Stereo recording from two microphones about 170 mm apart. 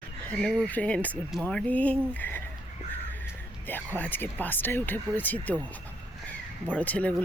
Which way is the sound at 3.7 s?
10° left (ahead or behind).